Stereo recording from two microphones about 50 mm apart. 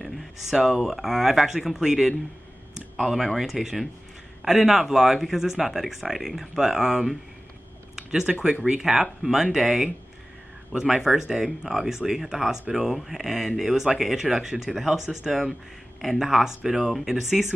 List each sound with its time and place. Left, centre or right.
0.0 s speech: centre